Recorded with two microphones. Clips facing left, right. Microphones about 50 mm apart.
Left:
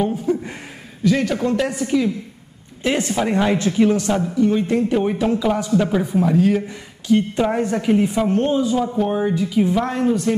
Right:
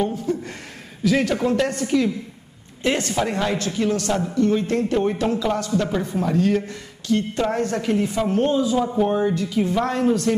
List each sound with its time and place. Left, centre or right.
0.0 s a sound: centre
1.0 s a man's voice: centre
8.3 s a man's voice: centre
9.1 s speech: centre